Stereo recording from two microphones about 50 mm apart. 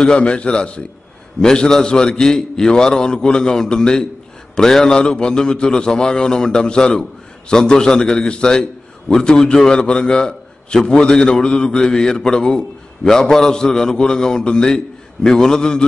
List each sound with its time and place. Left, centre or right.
0.0 s a man's voice: left